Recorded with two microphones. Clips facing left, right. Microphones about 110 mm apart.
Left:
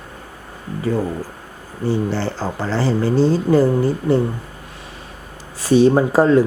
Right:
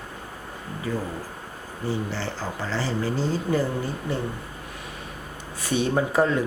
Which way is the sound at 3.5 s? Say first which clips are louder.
Left 10 dB; 90° left.